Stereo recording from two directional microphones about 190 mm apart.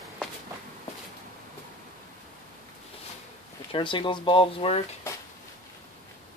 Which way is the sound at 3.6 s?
25° left (ahead or behind).